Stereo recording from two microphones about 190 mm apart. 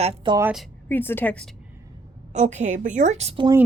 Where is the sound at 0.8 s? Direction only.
10° left (ahead or behind).